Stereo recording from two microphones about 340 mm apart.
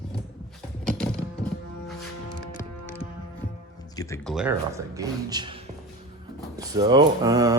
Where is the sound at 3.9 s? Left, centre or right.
Centre.